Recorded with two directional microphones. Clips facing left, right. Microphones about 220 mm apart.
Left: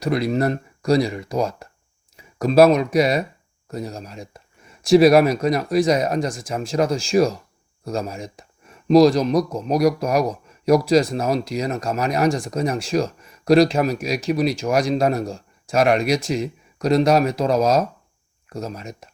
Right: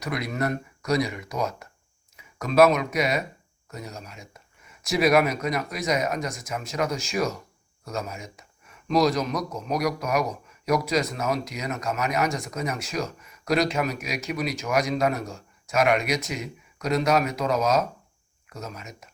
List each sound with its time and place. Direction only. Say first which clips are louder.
0.0 s speech: left 8 dB; 30° left (ahead or behind)